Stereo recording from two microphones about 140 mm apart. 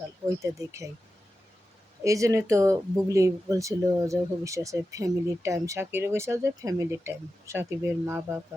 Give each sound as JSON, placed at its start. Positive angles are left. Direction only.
{"t": 2.0, "sound": "speech", "side_deg": -25}